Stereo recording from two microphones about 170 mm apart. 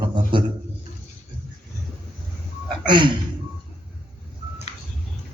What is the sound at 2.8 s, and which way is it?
Speech, 25° right (ahead or behind).